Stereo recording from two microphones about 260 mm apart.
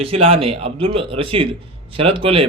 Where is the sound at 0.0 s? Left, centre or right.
Right.